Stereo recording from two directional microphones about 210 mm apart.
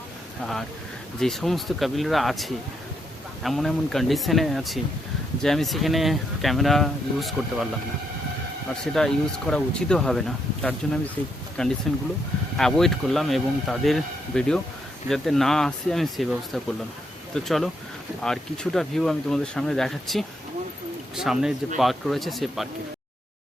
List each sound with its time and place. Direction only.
1.2 s speech: centre (ahead or behind)
8.7 s speech: 5° left (ahead or behind)